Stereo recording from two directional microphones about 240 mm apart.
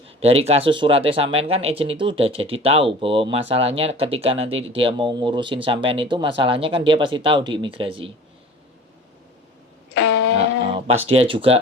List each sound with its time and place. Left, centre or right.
0.2 s speech: right
9.9 s a sound: left
11.1 s speech: right